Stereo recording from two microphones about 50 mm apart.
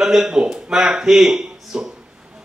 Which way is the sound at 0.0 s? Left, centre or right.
Centre.